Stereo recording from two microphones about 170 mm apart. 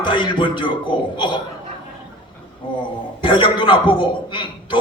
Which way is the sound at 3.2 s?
30° left (ahead or behind).